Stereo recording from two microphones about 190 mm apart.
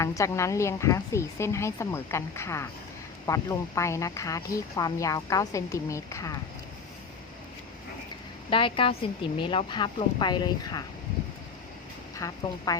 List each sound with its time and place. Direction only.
0.0 s speech: 15° left (ahead or behind)
8.4 s speech: 25° left (ahead or behind)
12.2 s speech: 15° left (ahead or behind)